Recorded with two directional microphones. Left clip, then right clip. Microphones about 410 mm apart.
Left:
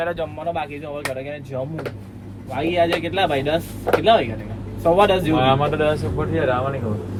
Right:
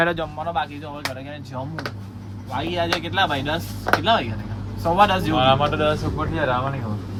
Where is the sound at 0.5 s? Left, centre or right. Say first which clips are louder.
Even; centre.